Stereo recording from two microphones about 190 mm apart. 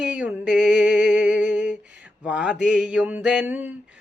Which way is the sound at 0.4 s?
65° left (ahead or behind).